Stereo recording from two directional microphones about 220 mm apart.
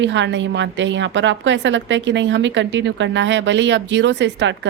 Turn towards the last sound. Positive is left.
turn(degrees=-55)  # may be behind; listen again after turning